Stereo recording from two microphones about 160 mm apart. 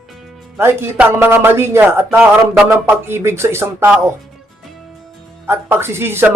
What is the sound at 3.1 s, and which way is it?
Speech, 15° right (ahead or behind).